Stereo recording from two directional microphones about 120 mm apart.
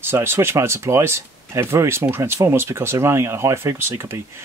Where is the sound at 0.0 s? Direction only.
20° right (ahead or behind).